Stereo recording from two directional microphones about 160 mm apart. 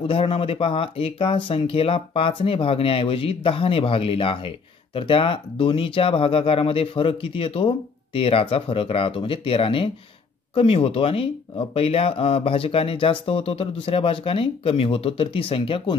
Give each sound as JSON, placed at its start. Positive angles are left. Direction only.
{"t": 0.0, "sound": "speech", "side_deg": 35}